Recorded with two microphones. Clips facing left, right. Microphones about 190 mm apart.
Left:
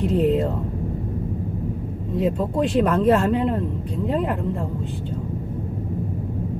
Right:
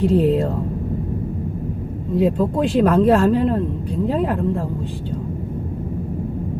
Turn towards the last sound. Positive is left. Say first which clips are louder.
# right 3 dB
turn(degrees=0)  # may be behind; listen again after turning